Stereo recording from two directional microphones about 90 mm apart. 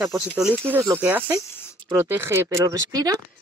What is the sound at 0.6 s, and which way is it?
Speech, 25° right (ahead or behind).